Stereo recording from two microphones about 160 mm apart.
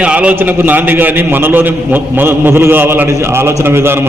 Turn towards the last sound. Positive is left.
turn(degrees=-15)  # may be behind; listen again after turning